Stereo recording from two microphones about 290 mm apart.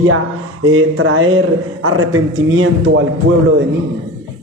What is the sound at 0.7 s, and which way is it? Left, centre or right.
A man's voice, right.